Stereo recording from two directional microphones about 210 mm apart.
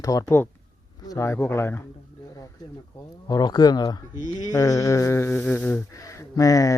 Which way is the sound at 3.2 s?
20° left (ahead or behind).